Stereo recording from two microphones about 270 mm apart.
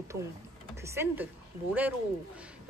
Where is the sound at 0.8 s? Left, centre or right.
Centre.